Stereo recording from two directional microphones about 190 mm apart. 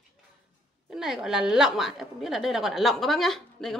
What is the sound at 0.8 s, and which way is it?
Speech, centre (ahead or behind).